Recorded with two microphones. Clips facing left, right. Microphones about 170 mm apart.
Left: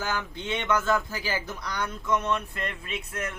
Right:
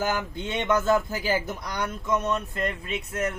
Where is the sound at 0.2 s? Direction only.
20° right (ahead or behind).